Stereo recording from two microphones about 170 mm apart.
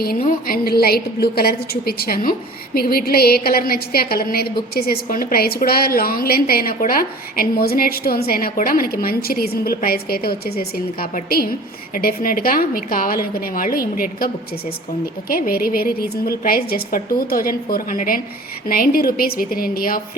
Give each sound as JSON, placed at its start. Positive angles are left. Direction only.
{"t": 0.3, "sound": "a woman's voice", "side_deg": 60}
{"t": 15.3, "sound": "a woman's voice", "side_deg": 60}